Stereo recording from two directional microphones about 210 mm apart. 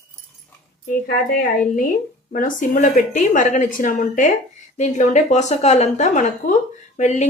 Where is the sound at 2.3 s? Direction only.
40° left (ahead or behind).